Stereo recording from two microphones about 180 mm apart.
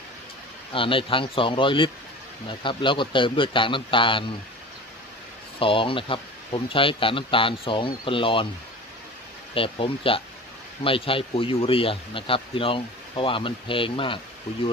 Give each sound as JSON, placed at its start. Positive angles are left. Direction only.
{"t": 0.7, "sound": "speech", "side_deg": 30}
{"t": 5.5, "sound": "speech", "side_deg": 30}
{"t": 9.6, "sound": "speech", "side_deg": 30}